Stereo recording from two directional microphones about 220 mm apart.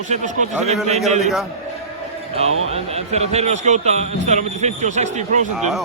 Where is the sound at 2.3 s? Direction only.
30° right (ahead or behind).